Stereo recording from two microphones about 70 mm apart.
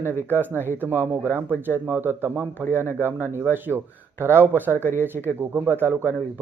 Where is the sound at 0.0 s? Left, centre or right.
Right.